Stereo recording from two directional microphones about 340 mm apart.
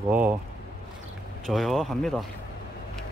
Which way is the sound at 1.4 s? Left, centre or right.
Centre.